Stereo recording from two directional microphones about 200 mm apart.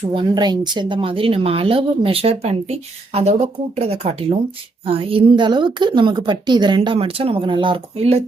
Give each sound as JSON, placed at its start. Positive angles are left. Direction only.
{"t": 0.1, "sound": "a woman's voice", "side_deg": -20}